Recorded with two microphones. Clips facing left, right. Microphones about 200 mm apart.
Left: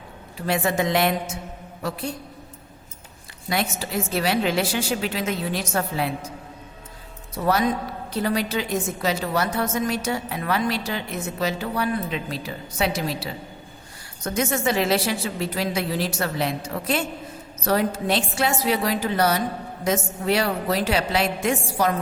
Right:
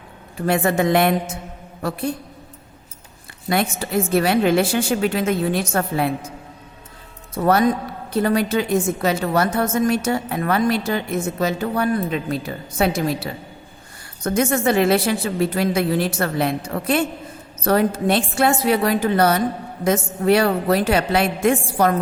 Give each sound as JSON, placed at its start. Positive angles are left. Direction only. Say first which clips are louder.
{"t": 0.4, "sound": "speech", "louder": "right 5 dB", "side_deg": -55}
{"t": 3.5, "sound": "a woman's voice", "louder": "right 5 dB", "side_deg": -55}
{"t": 7.3, "sound": "a woman's voice", "louder": "right 5 dB", "side_deg": -55}